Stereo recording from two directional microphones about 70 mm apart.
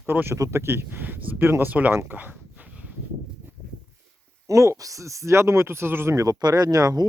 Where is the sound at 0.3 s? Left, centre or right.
Right.